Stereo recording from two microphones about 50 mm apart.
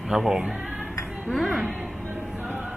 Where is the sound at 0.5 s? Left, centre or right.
Right.